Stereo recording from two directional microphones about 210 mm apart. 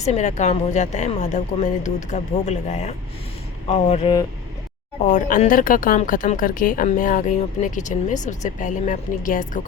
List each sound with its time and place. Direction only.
0.0 s a woman's voice: 35° left (ahead or behind)